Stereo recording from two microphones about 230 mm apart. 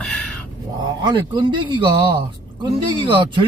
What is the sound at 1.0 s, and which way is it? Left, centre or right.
Speech, right.